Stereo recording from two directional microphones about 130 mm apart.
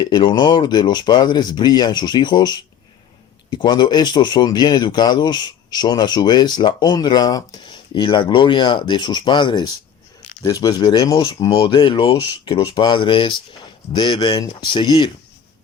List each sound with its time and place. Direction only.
0.0 s speech: 35° left (ahead or behind)
11.2 s speech: 40° left (ahead or behind)